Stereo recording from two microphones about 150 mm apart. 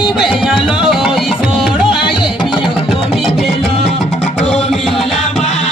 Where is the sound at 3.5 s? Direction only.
45° left (ahead or behind).